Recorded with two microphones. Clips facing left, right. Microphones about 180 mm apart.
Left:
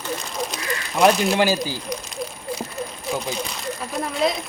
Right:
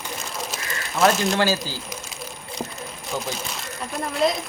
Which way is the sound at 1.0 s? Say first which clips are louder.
Left 2 dB; 15° left (ahead or behind).